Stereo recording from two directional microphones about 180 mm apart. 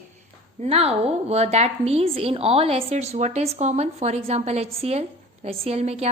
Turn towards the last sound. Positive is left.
turn(degrees=-35)  # may be behind; listen again after turning